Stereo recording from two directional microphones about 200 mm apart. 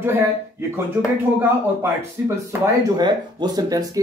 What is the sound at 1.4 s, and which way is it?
Speech, 10° right (ahead or behind).